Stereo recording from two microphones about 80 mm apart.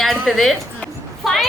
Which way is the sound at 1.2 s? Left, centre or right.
Centre.